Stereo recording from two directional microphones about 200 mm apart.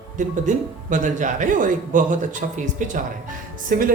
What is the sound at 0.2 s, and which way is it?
Speech, 40° right (ahead or behind).